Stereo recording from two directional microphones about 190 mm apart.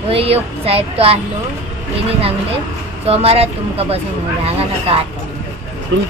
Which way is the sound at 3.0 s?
30° right (ahead or behind).